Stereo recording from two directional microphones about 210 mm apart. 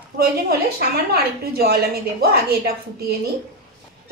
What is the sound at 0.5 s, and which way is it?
A woman's voice, 50° right (ahead or behind).